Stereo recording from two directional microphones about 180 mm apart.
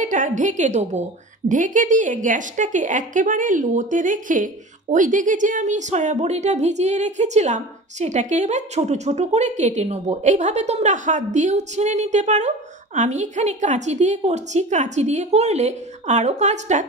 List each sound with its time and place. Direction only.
0.0 s a woman's voice: 45° right (ahead or behind)